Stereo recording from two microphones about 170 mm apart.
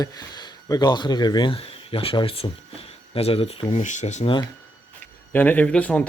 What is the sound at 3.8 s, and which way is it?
Speech, 45° left (ahead or behind).